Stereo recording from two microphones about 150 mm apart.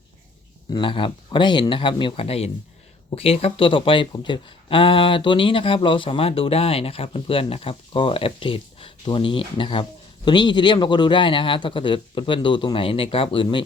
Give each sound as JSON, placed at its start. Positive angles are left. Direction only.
{"t": 0.7, "sound": "speech", "side_deg": 35}